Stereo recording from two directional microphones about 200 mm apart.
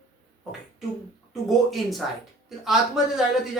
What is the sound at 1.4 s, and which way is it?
Speech, centre (ahead or behind).